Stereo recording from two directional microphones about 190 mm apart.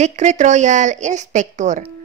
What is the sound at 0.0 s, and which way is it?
A woman's voice, 40° right (ahead or behind).